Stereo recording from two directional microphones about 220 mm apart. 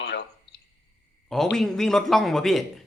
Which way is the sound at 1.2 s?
Centre (ahead or behind).